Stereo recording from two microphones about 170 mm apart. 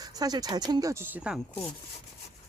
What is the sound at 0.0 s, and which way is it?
Speech, 20° right (ahead or behind).